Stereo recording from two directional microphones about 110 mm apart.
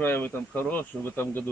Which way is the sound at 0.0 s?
20° left (ahead or behind).